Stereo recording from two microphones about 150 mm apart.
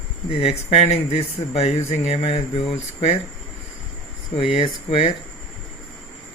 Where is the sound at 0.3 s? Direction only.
45° left (ahead or behind).